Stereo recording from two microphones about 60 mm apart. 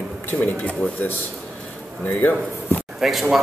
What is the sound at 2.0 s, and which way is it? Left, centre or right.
Speech, left.